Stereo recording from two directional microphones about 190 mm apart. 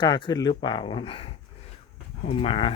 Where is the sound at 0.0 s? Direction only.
25° left (ahead or behind).